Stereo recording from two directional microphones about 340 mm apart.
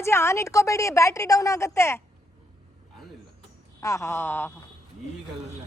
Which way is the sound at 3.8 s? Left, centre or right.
Centre.